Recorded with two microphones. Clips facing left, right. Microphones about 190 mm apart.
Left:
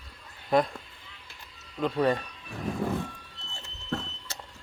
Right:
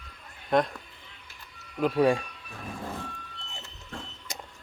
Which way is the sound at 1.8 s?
10° right (ahead or behind).